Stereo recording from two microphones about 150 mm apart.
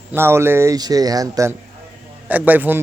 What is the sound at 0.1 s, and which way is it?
Speech, 15° right (ahead or behind).